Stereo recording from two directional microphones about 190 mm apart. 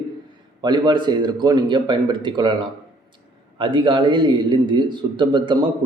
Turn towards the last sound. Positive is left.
turn(degrees=-25)  # may be behind; listen again after turning